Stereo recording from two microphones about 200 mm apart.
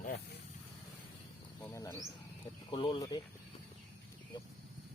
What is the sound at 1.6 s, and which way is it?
Speech, 15° left (ahead or behind).